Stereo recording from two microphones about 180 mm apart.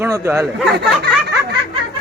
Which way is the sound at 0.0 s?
15° right (ahead or behind).